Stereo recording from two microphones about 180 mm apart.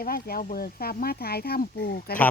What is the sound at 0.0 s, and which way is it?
Speech, 55° left (ahead or behind).